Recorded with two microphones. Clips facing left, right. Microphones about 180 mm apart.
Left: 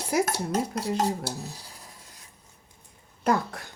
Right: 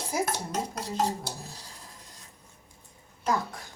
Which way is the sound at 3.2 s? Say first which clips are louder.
Left 4 dB; 60° left (ahead or behind).